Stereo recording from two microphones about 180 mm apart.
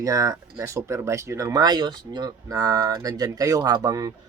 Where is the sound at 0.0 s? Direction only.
20° right (ahead or behind).